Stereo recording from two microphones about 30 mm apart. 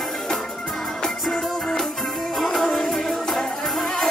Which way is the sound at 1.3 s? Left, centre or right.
Centre.